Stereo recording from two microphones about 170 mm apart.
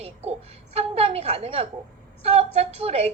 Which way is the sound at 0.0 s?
40° right (ahead or behind).